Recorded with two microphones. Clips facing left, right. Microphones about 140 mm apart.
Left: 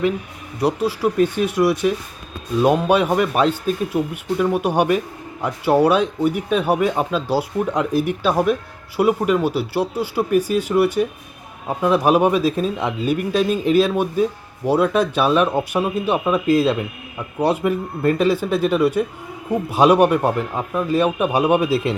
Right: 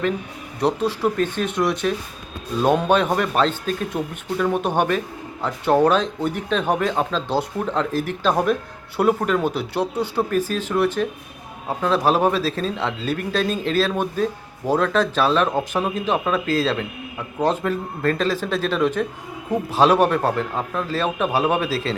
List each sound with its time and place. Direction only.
0.6 s speech: 5° left (ahead or behind)